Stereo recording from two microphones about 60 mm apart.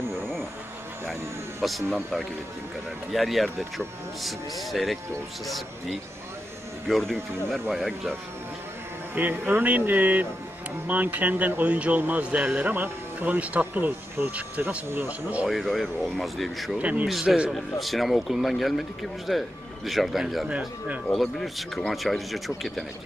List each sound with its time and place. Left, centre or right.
1.6 s speech: centre
3.1 s speech: centre
6.9 s speech: centre
9.1 s a man's voice: right
15.4 s speech: centre
16.7 s a man's voice: right
17.1 s speech: centre
20.4 s a man's voice: right
21.1 s speech: centre